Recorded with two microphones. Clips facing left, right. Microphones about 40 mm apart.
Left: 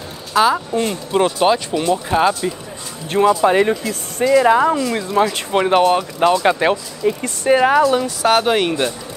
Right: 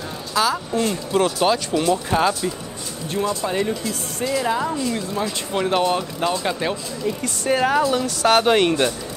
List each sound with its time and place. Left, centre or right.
0.3 s speech: left
3.1 s speech: left
5.6 s speech: left; by 8.9 s centre